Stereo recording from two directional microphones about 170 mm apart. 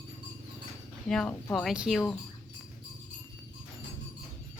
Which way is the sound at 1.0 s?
5° left (ahead or behind).